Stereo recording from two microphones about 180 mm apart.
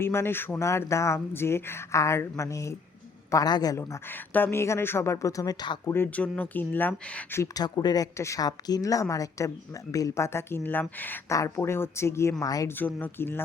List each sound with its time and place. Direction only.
0.0 s a woman's voice: 15° left (ahead or behind)
7.3 s a woman's voice: 20° left (ahead or behind)